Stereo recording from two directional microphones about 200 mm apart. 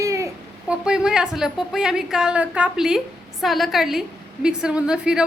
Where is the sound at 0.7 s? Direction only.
5° right (ahead or behind).